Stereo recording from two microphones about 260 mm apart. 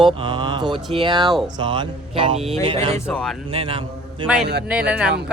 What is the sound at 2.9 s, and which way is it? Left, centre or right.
Speech, centre.